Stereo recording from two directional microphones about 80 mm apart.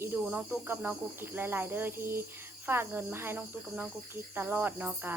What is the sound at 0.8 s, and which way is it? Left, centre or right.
Speech, right.